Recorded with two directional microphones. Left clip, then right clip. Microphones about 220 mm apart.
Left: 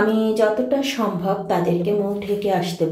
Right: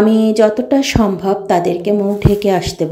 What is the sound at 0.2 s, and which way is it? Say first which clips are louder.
A woman's voice: right 6 dB; 45° right (ahead or behind).